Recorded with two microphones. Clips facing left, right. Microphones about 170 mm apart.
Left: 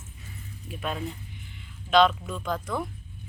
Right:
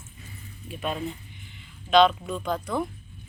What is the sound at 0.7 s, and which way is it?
A woman's voice, 5° right (ahead or behind).